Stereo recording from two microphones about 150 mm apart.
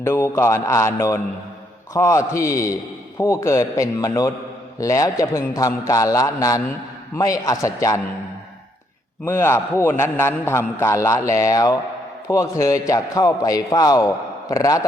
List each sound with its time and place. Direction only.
0.0 s a man's voice: 15° left (ahead or behind)
9.2 s a man's voice: 15° left (ahead or behind)